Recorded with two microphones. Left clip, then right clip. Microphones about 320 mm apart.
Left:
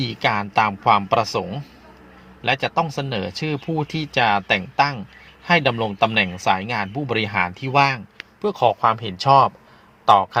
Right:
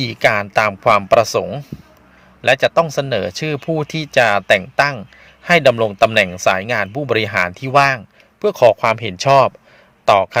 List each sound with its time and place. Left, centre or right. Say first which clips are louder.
0.0 s a man's voice: right 6 dB; right